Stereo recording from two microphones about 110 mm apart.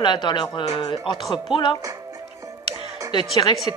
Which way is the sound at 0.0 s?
45° left (ahead or behind).